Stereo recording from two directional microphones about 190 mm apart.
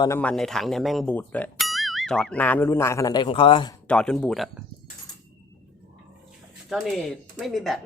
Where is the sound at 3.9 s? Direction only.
5° left (ahead or behind).